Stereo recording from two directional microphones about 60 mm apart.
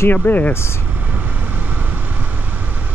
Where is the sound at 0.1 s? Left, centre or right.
Left.